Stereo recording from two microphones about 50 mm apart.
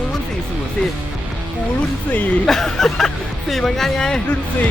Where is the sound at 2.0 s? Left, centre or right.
Left.